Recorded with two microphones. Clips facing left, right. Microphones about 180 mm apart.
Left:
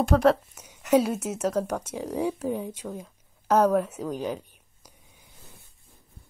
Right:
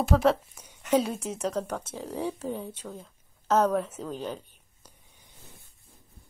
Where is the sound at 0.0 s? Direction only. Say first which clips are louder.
Left 3 dB; centre (ahead or behind).